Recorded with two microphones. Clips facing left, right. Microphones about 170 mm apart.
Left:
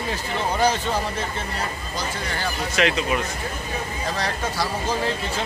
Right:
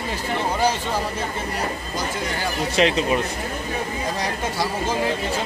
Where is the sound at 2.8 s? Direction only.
30° right (ahead or behind).